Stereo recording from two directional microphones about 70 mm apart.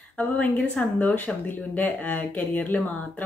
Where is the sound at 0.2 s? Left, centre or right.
Left.